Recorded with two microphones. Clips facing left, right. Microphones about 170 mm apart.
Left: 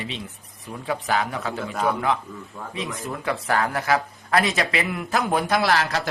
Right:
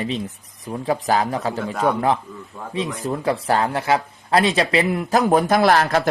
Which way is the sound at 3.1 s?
30° right (ahead or behind).